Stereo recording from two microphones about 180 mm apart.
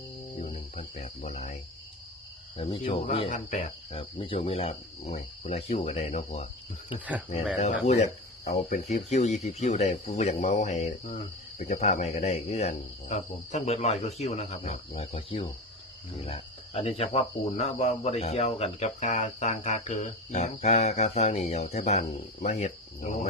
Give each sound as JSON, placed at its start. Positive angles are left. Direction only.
{"t": 0.3, "sound": "cricket", "side_deg": 35}
{"t": 2.6, "sound": "cricket", "side_deg": 30}
{"t": 7.9, "sound": "cricket", "side_deg": 40}